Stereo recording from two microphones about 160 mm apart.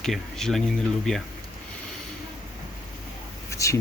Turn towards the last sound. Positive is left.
turn(degrees=20)  # may be behind; listen again after turning